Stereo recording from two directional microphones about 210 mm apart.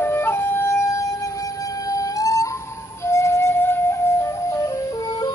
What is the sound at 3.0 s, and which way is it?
Music, 15° left (ahead or behind).